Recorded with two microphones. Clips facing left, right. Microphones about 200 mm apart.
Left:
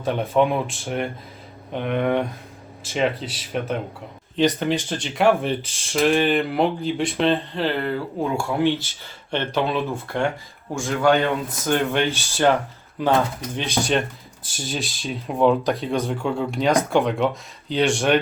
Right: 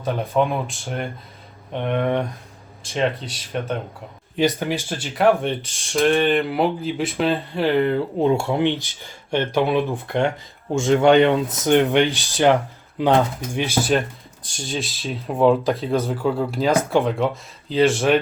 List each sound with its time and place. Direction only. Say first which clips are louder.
0.0 s speech: left 1 dB; centre (ahead or behind)
4.4 s speech: left 1 dB; 10° right (ahead or behind)